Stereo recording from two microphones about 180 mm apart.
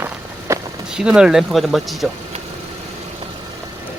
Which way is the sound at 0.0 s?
15° right (ahead or behind).